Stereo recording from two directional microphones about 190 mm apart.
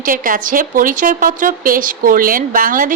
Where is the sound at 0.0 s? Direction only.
45° right (ahead or behind).